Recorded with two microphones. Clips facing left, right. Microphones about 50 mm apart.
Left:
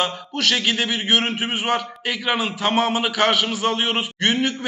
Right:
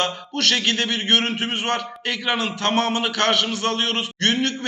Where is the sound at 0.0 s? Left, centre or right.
Centre.